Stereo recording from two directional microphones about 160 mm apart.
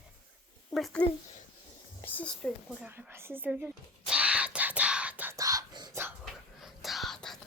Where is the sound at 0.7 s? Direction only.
Centre (ahead or behind).